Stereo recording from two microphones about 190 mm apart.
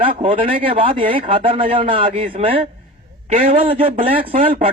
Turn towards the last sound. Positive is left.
turn(degrees=-30)  # may be behind; listen again after turning